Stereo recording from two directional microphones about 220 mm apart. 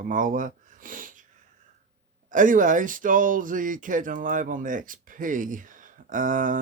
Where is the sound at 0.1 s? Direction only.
40° right (ahead or behind).